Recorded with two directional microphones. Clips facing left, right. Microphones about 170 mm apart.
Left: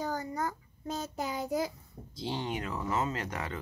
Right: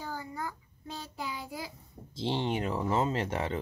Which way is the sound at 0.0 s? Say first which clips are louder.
Left 5 dB; 40° left (ahead or behind).